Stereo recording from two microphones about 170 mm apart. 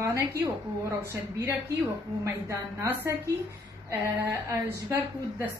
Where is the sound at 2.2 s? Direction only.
15° right (ahead or behind).